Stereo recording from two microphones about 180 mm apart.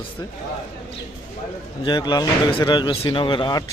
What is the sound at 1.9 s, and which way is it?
Speech, 25° left (ahead or behind).